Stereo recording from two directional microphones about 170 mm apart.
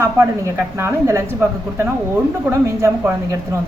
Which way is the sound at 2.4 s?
15° right (ahead or behind).